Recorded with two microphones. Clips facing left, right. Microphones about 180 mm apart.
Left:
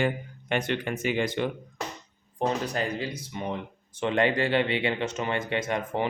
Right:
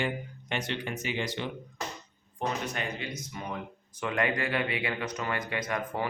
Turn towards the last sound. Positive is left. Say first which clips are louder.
# left 4 dB
turn(degrees=25)  # may be behind; listen again after turning